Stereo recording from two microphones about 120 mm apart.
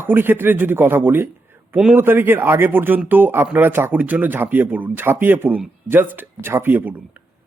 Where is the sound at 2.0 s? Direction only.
20° right (ahead or behind).